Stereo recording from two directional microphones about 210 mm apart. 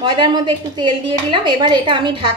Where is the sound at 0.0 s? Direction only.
25° right (ahead or behind).